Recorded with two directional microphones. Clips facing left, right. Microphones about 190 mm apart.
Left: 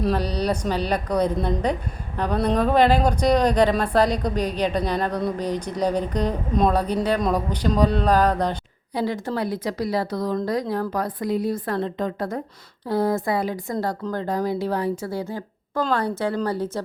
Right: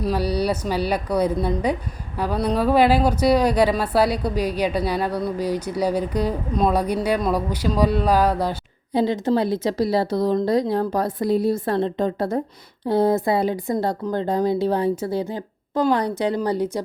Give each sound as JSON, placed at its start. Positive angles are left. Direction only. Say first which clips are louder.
{"t": 0.0, "sound": "speech", "louder": "right 1 dB", "side_deg": -5}
{"t": 8.9, "sound": "speech", "louder": "right 6 dB", "side_deg": -25}